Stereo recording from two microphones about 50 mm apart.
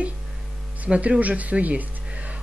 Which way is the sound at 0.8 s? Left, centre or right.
Right.